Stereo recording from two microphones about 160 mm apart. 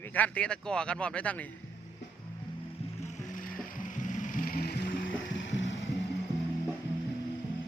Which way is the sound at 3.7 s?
55° left (ahead or behind).